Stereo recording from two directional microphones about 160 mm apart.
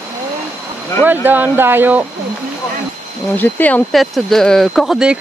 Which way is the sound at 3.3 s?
10° left (ahead or behind).